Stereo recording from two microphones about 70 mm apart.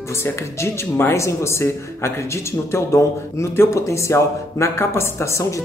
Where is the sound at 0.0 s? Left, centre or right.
Left.